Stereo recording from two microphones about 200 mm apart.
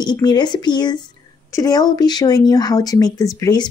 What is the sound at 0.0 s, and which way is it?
Speech, 20° left (ahead or behind).